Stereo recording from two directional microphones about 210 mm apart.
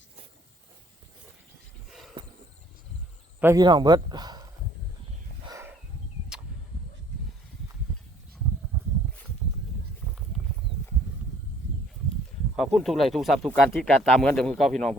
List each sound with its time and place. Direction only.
1.9 s horse: centre (ahead or behind)
3.4 s a man's voice: 15° right (ahead or behind)
5.5 s a sound: 15° right (ahead or behind)
12.5 s speech: centre (ahead or behind)